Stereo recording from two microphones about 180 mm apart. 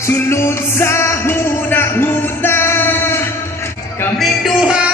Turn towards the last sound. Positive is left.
turn(degrees=-5)  # may be behind; listen again after turning